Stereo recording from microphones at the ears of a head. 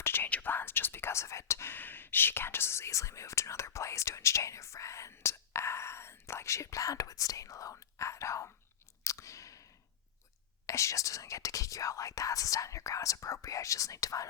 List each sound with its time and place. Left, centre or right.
0.0 s speech: left
9.0 s a sound: left
10.7 s speech: left